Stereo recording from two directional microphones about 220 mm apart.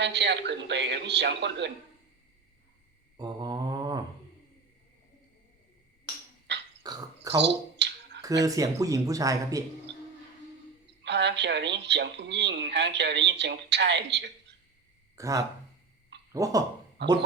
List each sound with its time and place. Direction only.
0.0 s speech: 50° right (ahead or behind)
3.2 s mantra: 20° right (ahead or behind)
6.5 s a sound: 50° right (ahead or behind)
6.8 s a sound: 20° right (ahead or behind)
7.3 s a sound: 50° right (ahead or behind)
8.2 s speech: 15° right (ahead or behind)
11.0 s speech: 50° right (ahead or behind)
15.1 s speech: 15° right (ahead or behind)
17.0 s speech: 50° right (ahead or behind)